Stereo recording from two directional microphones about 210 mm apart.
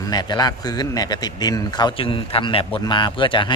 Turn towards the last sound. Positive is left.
turn(degrees=25)  # may be behind; listen again after turning